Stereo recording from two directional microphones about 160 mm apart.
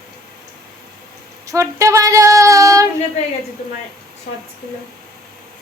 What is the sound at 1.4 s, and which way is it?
Female singing, 20° right (ahead or behind).